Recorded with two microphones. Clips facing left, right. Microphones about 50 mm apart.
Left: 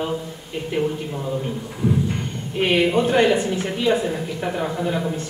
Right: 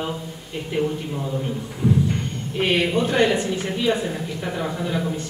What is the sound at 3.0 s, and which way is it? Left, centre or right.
Speech, centre.